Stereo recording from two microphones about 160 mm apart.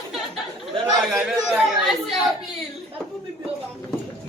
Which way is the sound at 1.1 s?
Centre (ahead or behind).